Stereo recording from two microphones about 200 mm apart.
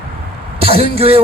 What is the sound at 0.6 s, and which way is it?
Speech, 30° right (ahead or behind).